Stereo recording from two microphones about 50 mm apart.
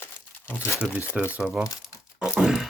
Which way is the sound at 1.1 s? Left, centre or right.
Centre.